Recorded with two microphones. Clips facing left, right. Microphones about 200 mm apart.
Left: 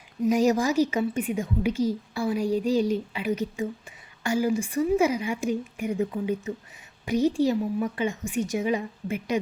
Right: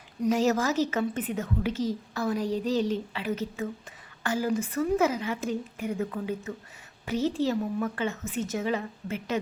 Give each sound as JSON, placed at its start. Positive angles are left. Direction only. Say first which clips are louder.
{"t": 0.3, "sound": "a woman's voice", "louder": "left 3 dB", "side_deg": 15}